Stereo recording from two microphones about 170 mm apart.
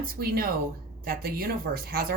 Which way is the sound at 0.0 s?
60° right (ahead or behind).